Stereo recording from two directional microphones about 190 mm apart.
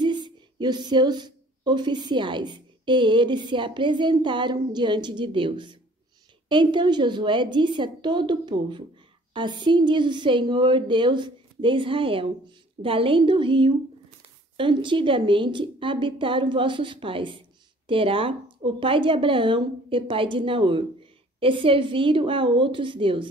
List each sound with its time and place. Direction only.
0.0 s a woman's voice: 25° right (ahead or behind)